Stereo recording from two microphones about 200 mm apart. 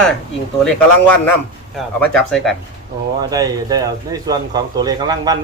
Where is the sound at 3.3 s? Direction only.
20° right (ahead or behind).